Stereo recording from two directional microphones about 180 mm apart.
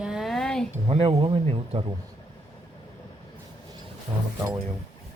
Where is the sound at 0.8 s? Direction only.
30° right (ahead or behind).